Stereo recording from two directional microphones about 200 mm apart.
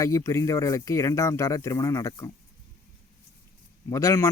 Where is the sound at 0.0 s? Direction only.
15° left (ahead or behind).